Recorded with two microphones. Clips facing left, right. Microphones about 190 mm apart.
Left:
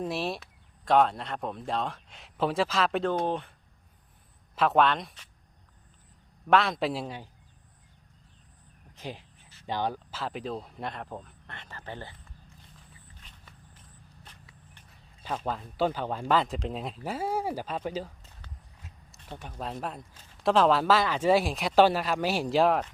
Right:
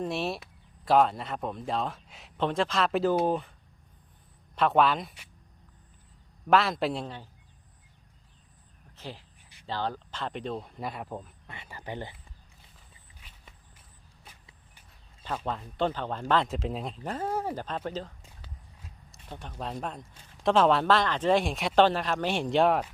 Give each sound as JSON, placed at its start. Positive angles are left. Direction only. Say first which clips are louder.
{"t": 0.0, "sound": "a man's voice", "louder": "even", "side_deg": 0}
{"t": 4.5, "sound": "a man's voice", "louder": "even", "side_deg": 0}
{"t": 6.5, "sound": "a man's voice", "louder": "even", "side_deg": 0}
{"t": 9.0, "sound": "a man's voice", "louder": "left 2 dB", "side_deg": 15}
{"t": 13.1, "sound": "walk", "louder": "left 1 dB", "side_deg": -10}
{"t": 14.3, "sound": "a sound", "louder": "right 2 dB", "side_deg": -5}
{"t": 15.4, "sound": "speech", "louder": "left 1 dB", "side_deg": 0}
{"t": 18.8, "sound": "a sound", "louder": "even", "side_deg": 5}
{"t": 20.4, "sound": "a man's voice", "louder": "even", "side_deg": 0}